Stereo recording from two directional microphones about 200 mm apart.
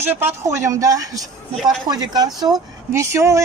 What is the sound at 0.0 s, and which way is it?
Speech, 10° right (ahead or behind).